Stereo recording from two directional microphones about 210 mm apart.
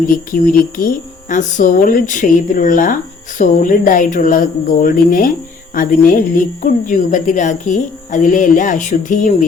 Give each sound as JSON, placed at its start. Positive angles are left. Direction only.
{"t": 0.1, "sound": "speech", "side_deg": 40}